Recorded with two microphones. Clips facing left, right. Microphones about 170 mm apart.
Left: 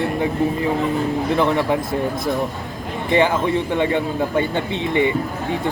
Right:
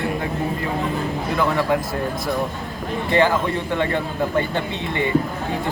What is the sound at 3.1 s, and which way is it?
A man's voice, 20° left (ahead or behind).